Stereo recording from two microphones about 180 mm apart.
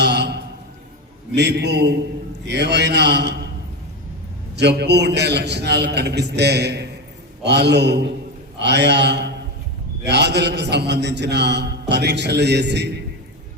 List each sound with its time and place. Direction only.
0.0 s a sound: 65° right (ahead or behind)
1.4 s a man's voice: 70° right (ahead or behind)
4.5 s a man's voice: 70° right (ahead or behind)